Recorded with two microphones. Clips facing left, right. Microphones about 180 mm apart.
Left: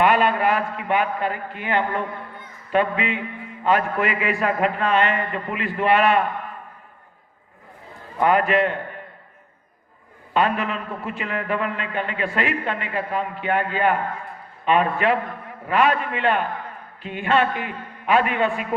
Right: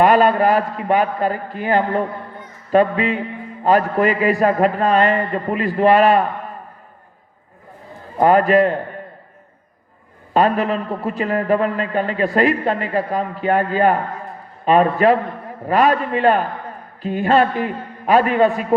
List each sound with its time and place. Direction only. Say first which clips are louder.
0.0 s a man's voice: right 5 dB; 40° right (ahead or behind)
8.2 s a man's voice: right 6 dB; 40° right (ahead or behind)
10.3 s a man's voice: right 5 dB; 40° right (ahead or behind)